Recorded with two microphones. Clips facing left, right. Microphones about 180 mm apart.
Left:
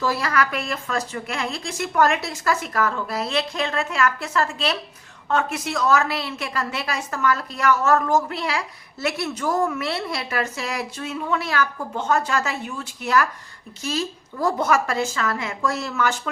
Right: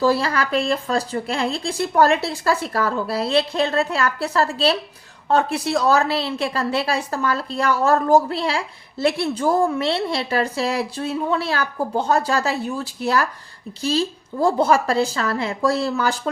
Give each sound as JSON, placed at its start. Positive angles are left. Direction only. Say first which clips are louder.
{"t": 0.0, "sound": "a woman's voice", "louder": "right 4 dB", "side_deg": -30}